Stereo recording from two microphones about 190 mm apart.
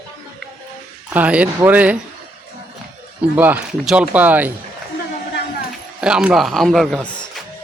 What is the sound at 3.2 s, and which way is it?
Speech, 5° right (ahead or behind).